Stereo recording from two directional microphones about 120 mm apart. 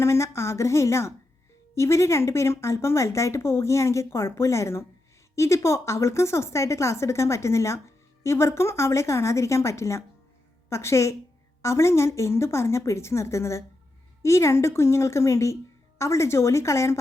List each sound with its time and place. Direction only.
0.0 s speech: 25° left (ahead or behind)